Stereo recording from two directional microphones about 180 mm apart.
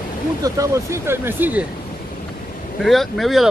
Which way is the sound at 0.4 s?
15° right (ahead or behind).